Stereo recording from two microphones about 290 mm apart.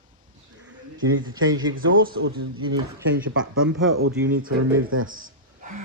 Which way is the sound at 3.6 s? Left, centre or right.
Right.